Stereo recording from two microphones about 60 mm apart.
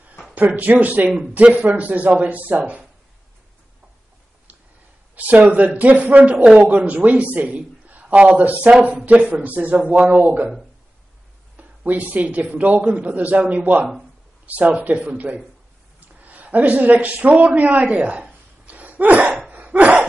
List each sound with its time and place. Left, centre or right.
0.6 s a man's voice: right
5.1 s a man's voice: right
11.5 s a sound: right
12.5 s a man's voice: right
18.7 s a sound: right
19.5 s cough: right